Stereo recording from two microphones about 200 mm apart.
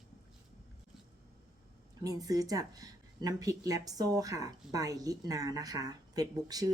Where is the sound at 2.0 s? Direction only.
15° right (ahead or behind).